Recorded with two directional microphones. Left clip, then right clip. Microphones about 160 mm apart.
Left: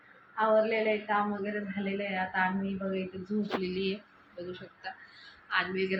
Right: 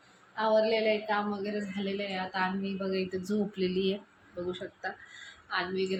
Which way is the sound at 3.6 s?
65° right (ahead or behind).